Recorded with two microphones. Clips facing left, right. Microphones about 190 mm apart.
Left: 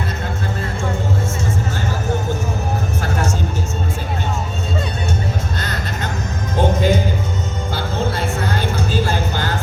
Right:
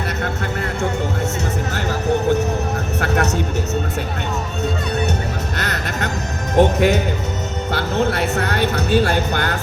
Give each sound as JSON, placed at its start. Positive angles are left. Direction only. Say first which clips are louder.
{"t": 1.7, "sound": "vehicle", "louder": "right 3 dB", "side_deg": -65}
{"t": 5.5, "sound": "music", "louder": "right 2 dB", "side_deg": -70}
{"t": 7.7, "sound": "vehicle", "louder": "right 4 dB", "side_deg": -65}